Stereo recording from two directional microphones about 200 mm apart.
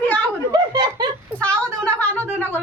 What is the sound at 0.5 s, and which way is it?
Chuckle, 20° right (ahead or behind).